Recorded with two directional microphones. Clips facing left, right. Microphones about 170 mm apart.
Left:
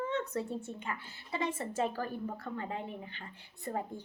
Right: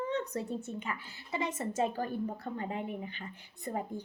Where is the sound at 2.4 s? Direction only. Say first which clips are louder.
Right 2 dB; 20° right (ahead or behind).